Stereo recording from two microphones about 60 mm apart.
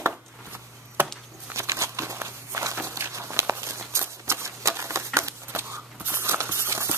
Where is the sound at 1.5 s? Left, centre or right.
Right.